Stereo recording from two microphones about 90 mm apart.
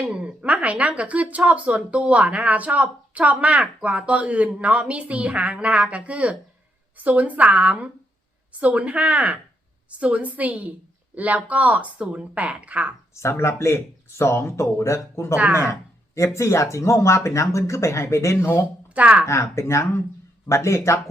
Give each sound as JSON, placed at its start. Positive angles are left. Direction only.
{"t": 0.1, "sound": "speech", "side_deg": -10}
{"t": 13.1, "sound": "speech", "side_deg": 30}
{"t": 18.9, "sound": "speech", "side_deg": -15}
{"t": 19.2, "sound": "speech", "side_deg": 30}